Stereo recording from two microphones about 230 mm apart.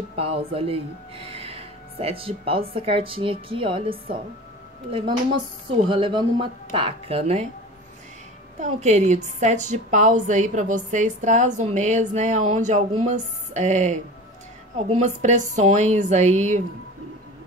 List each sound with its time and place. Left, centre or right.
0.1 s speech: right
5.9 s speech: right
8.5 s a woman's voice: right